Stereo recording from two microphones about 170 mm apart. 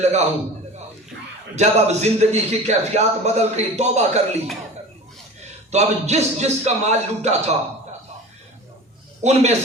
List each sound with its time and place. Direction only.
0.0 s a man's voice: 40° right (ahead or behind)
1.5 s a man's voice: 40° right (ahead or behind)
5.7 s a man's voice: 40° right (ahead or behind)
9.2 s a man's voice: 40° right (ahead or behind)